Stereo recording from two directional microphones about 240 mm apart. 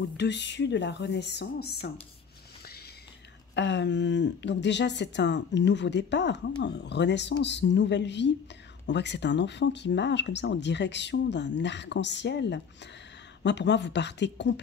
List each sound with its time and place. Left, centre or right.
0.2 s speech: left
3.5 s speech: left